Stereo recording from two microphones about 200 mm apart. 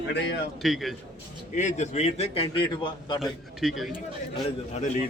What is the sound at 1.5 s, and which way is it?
A man's voice, 35° left (ahead or behind).